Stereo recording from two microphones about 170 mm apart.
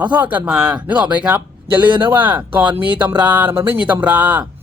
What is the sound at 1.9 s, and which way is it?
Speech, 30° right (ahead or behind).